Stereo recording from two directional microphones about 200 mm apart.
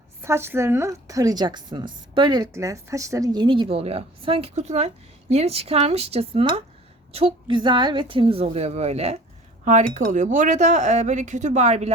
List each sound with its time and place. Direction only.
0.2 s a woman's voice: 10° right (ahead or behind); by 11.9 s 35° right (ahead or behind)